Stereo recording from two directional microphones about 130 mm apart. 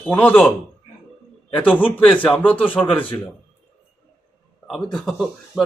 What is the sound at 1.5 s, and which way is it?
Speech, 15° left (ahead or behind).